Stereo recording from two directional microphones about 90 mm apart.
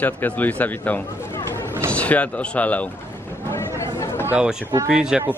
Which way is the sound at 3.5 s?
30° left (ahead or behind).